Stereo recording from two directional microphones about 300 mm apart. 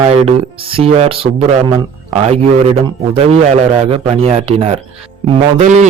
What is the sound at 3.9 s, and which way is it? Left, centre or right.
Speech, centre.